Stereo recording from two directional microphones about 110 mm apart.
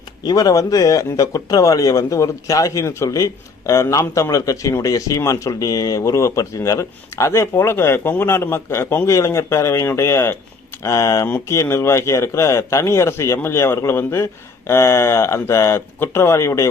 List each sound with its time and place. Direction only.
0.3 s a man's voice: 35° left (ahead or behind)